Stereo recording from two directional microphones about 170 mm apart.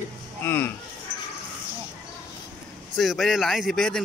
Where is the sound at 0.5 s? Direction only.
15° left (ahead or behind).